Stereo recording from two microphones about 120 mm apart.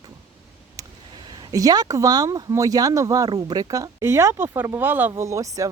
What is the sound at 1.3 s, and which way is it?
Speech, 35° right (ahead or behind).